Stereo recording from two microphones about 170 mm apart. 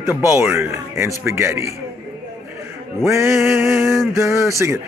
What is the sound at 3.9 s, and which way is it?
Male singing, 15° right (ahead or behind).